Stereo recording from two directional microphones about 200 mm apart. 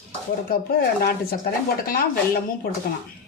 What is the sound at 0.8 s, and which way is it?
Speech, 50° left (ahead or behind).